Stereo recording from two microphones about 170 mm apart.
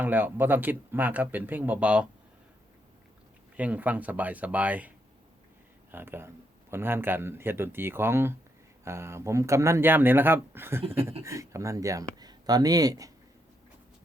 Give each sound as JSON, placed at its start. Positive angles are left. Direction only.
{"t": 0.0, "sound": "speech", "side_deg": -10}
{"t": 3.6, "sound": "speech", "side_deg": -10}
{"t": 5.9, "sound": "speech", "side_deg": -15}